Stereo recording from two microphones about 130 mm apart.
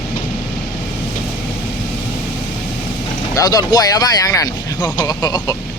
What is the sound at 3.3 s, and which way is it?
Speech, 25° left (ahead or behind).